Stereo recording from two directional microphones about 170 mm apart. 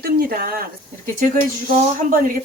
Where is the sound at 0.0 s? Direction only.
60° right (ahead or behind).